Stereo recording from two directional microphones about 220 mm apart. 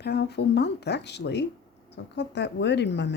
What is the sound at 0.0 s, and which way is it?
Speech, 50° left (ahead or behind).